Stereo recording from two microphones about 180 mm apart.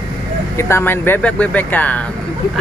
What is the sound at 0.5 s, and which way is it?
Speech, 15° left (ahead or behind).